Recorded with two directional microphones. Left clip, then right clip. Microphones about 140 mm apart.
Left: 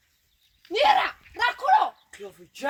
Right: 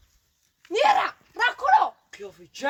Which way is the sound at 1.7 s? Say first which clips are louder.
Right 2 dB; 5° right (ahead or behind).